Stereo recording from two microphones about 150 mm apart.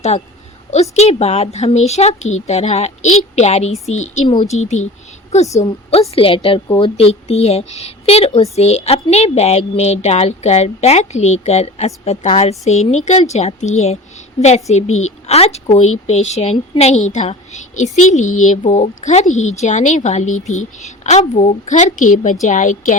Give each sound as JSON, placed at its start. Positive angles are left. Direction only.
{"t": 0.7, "sound": "speech", "side_deg": 45}
{"t": 5.6, "sound": "a woman's voice", "side_deg": 40}